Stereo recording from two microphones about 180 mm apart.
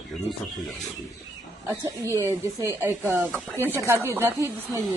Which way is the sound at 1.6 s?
20° right (ahead or behind).